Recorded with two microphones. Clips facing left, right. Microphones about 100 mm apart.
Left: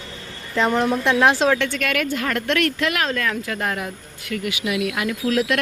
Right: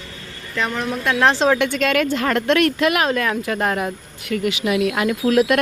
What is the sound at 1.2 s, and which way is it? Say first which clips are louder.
Speech: right 2 dB; 10° left (ahead or behind).